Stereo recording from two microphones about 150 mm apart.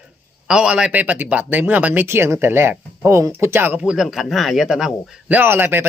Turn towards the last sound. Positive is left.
turn(degrees=-15)  # may be behind; listen again after turning